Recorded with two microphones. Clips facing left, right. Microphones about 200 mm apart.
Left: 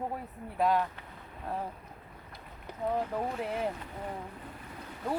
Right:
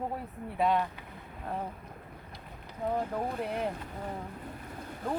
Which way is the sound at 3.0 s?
Centre (ahead or behind).